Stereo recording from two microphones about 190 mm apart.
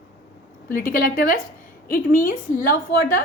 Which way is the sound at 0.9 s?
45° left (ahead or behind).